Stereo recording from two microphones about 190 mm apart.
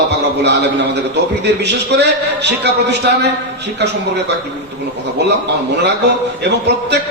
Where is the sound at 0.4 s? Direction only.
65° right (ahead or behind).